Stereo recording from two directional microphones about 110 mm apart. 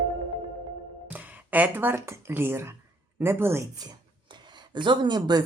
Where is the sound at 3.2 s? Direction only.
20° right (ahead or behind).